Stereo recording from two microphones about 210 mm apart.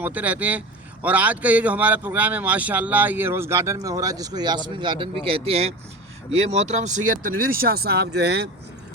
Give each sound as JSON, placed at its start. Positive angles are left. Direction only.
{"t": 0.0, "sound": "speech", "side_deg": -5}